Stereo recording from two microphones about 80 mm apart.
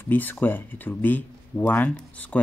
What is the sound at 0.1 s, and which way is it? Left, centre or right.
Speech, left.